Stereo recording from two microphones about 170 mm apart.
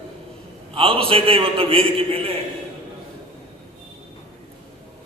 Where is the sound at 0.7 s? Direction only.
30° right (ahead or behind).